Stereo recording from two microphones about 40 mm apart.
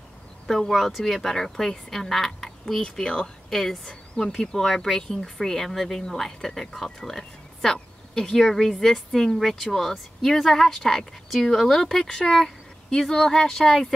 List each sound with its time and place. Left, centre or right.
0.5 s speech: centre
2.8 s a woman's voice: centre